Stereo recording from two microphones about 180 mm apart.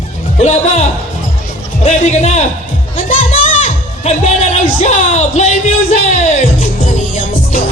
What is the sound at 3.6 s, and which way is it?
Music, 40° left (ahead or behind).